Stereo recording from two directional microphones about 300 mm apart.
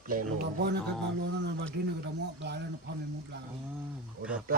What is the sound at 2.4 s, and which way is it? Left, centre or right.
Speech, right.